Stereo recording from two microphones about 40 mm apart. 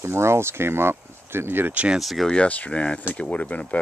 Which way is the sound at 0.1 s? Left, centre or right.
Right.